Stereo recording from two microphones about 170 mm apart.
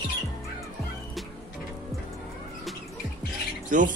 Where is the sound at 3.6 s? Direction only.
50° right (ahead or behind).